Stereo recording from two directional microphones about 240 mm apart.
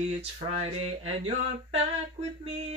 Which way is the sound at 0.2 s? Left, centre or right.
Right.